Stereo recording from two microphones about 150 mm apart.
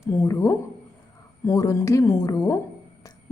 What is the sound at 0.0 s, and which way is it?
A woman's voice, 20° left (ahead or behind).